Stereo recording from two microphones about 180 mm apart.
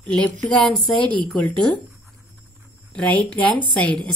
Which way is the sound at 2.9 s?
5° left (ahead or behind).